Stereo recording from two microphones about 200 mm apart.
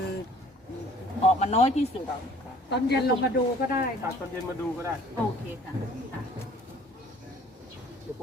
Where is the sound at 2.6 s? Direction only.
60° left (ahead or behind).